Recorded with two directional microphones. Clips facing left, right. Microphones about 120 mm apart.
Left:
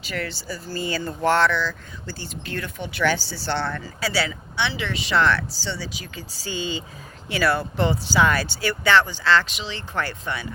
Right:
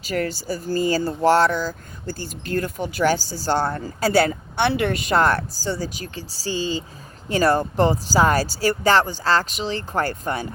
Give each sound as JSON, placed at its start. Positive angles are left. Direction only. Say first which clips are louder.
{"t": 0.0, "sound": "speech", "louder": "right 6 dB", "side_deg": -40}